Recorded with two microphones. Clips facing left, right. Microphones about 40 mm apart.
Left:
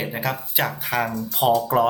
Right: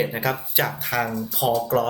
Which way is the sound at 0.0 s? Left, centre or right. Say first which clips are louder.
Right 2 dB; centre.